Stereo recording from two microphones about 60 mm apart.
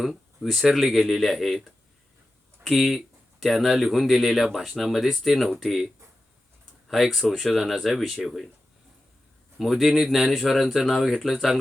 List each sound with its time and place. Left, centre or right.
0.0 s speech: centre
9.6 s speech: centre